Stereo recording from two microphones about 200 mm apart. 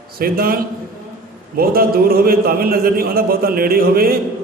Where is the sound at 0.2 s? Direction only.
45° right (ahead or behind).